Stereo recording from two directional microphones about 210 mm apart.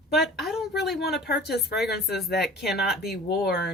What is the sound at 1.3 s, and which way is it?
Speech, 50° left (ahead or behind).